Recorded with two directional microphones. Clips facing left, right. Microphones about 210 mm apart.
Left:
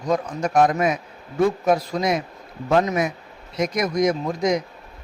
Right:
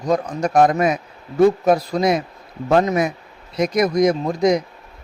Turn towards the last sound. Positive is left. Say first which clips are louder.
# right 4 dB
turn(degrees=-35)  # may be behind; listen again after turning